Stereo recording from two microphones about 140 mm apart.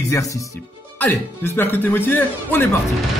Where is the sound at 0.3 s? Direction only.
25° left (ahead or behind).